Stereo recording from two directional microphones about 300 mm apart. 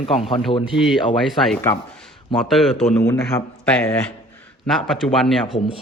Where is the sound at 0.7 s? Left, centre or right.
Centre.